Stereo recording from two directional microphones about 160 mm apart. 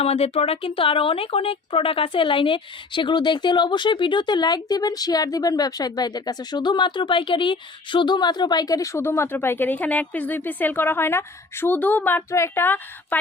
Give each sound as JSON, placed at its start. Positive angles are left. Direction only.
{"t": 0.0, "sound": "speech", "side_deg": 40}